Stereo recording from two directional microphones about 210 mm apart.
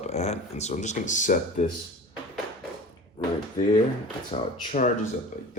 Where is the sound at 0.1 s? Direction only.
30° left (ahead or behind).